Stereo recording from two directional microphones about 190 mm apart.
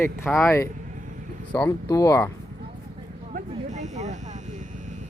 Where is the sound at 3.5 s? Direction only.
40° right (ahead or behind).